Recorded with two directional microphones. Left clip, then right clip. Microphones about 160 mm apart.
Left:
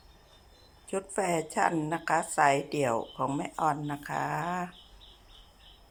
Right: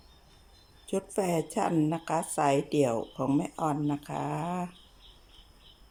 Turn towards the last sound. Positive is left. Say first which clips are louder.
# left 2 dB
turn(degrees=-15)  # may be behind; listen again after turning